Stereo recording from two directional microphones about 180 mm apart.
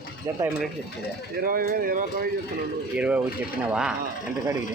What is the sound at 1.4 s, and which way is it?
Speech, 50° right (ahead or behind).